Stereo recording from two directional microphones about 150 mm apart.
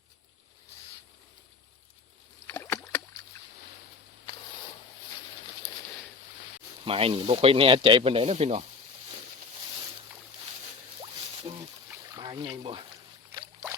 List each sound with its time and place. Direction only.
2.5 s rowboat: 20° left (ahead or behind)
6.8 s speech: 40° right (ahead or behind)
11.0 s music: 35° right (ahead or behind)
12.1 s a sound: 25° right (ahead or behind)
13.3 s boat: 20° right (ahead or behind)